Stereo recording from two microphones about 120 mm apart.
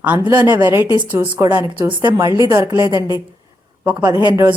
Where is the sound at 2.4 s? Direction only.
30° right (ahead or behind).